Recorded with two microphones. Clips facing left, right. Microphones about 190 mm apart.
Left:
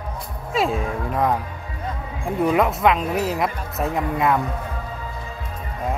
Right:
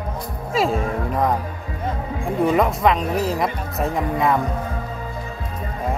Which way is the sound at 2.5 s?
Centre (ahead or behind).